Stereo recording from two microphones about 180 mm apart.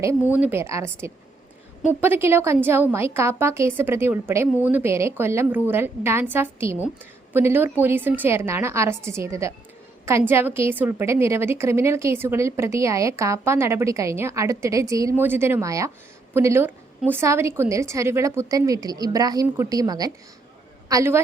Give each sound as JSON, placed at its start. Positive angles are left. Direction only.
{"t": 0.3, "sound": "a woman's voice", "side_deg": -10}